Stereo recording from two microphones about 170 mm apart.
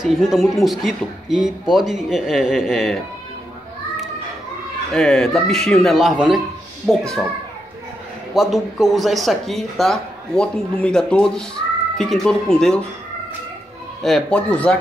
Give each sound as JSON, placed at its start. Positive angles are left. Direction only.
{"t": 0.0, "sound": "speech", "side_deg": 0}
{"t": 4.9, "sound": "speech", "side_deg": 0}
{"t": 8.4, "sound": "speech", "side_deg": 0}
{"t": 14.0, "sound": "speech", "side_deg": 5}